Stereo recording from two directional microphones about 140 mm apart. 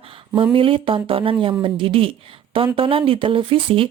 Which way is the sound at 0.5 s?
40° right (ahead or behind).